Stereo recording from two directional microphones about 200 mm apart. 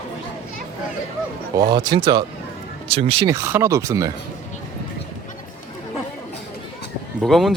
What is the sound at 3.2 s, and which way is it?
Speech, 10° right (ahead or behind).